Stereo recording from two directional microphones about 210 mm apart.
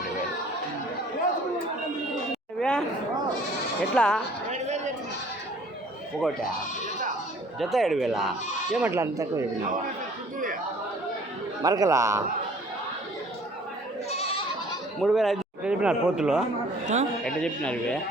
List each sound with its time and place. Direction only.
2.6 s a sound: 5° left (ahead or behind)
3.9 s speech: 5° left (ahead or behind)
4.5 s chatter: 35° right (ahead or behind)
7.6 s speech: centre (ahead or behind)
11.6 s speech: 15° right (ahead or behind)
14.1 s goat: 30° left (ahead or behind)
15.0 s speech: centre (ahead or behind)
16.8 s speech: 35° right (ahead or behind)
17.2 s speech: 5° left (ahead or behind)